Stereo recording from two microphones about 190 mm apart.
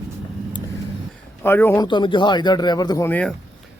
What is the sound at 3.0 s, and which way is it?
Speech, 10° left (ahead or behind).